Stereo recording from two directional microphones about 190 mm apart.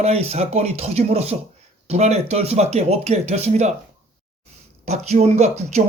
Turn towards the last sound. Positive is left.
turn(degrees=-35)  # may be behind; listen again after turning